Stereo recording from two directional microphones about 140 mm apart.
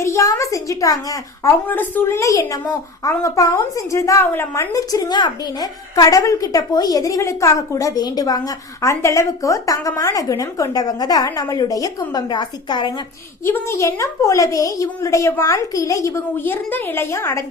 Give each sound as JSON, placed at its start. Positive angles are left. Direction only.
{"t": 0.0, "sound": "a woman's voice", "side_deg": 20}
{"t": 13.4, "sound": "a woman's voice", "side_deg": 20}